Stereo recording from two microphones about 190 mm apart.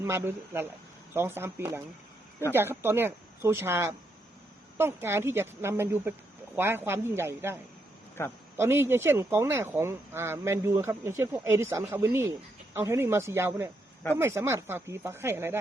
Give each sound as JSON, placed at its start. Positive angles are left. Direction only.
{"t": 0.0, "sound": "speech", "side_deg": -15}
{"t": 8.2, "sound": "a man's voice", "side_deg": 15}
{"t": 8.5, "sound": "speech", "side_deg": -15}